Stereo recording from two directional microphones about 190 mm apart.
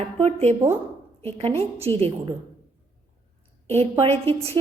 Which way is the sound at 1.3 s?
30° right (ahead or behind).